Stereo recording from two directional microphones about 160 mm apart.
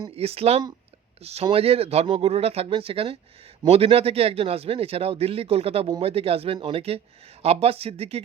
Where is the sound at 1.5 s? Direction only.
40° right (ahead or behind).